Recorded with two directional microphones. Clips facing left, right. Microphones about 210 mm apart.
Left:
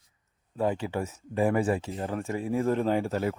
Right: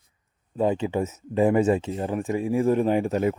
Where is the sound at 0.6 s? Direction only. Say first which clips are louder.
Right 5 dB; 20° right (ahead or behind).